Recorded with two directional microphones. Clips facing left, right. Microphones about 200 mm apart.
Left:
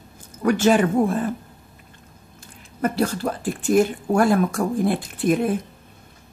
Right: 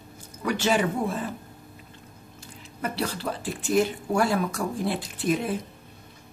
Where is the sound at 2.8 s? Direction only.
45° left (ahead or behind).